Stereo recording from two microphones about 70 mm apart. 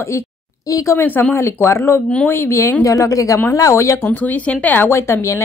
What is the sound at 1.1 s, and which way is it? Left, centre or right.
A woman's voice, left.